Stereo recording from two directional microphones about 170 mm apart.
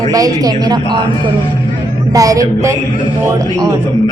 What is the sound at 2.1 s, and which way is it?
Speech, 20° right (ahead or behind).